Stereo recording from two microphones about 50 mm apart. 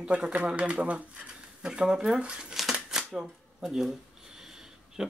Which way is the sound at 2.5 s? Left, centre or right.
Centre.